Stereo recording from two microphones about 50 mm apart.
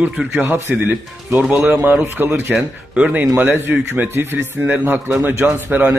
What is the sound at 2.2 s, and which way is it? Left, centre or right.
Speech, right.